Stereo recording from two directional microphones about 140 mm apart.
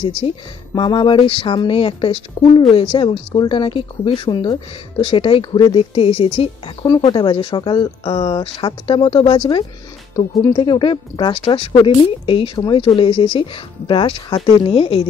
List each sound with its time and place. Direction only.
0.0 s speech: 40° left (ahead or behind)